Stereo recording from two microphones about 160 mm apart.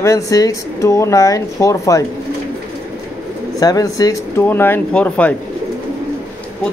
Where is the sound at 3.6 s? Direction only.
25° left (ahead or behind).